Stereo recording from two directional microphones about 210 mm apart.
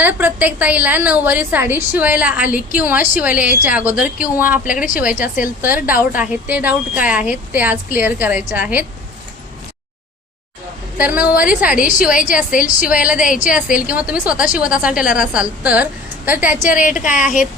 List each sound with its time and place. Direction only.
0.0 s a woman's voice: 10° right (ahead or behind)
4.6 s speech: 40° left (ahead or behind)
5.6 s a woman's voice: 10° right (ahead or behind)
10.9 s a woman's voice: 10° right (ahead or behind)
11.8 s speech: 40° left (ahead or behind)
13.1 s a woman's voice: 5° right (ahead or behind)
16.6 s speech: 40° left (ahead or behind)